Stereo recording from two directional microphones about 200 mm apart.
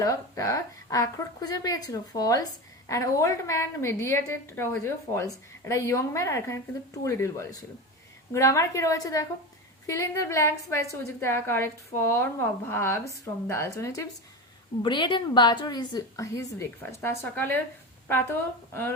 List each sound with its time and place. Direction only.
0.0 s a woman's voice: 15° left (ahead or behind)